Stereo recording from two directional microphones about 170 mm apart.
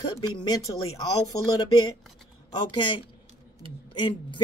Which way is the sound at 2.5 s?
25° left (ahead or behind).